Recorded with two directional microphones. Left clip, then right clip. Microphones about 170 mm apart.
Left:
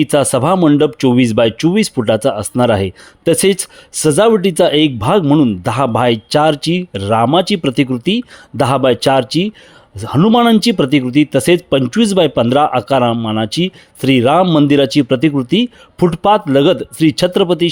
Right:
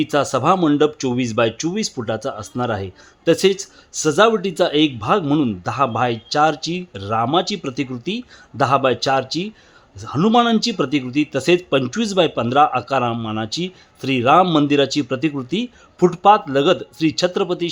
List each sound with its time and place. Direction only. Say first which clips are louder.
0.0 s speech: left 5 dB; 45° left (ahead or behind)
0.5 s speech: left 5 dB; 30° left (ahead or behind)
5.2 s speech: left 7 dB; 30° left (ahead or behind)
5.6 s speech: left 6 dB; 45° left (ahead or behind)
14.4 s speech: left 5 dB; 25° left (ahead or behind)
14.7 s speech: left 6 dB; 40° left (ahead or behind)